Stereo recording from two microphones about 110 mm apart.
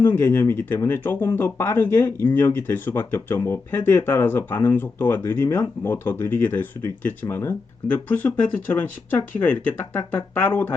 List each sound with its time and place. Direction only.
0.0 s speech: 20° left (ahead or behind)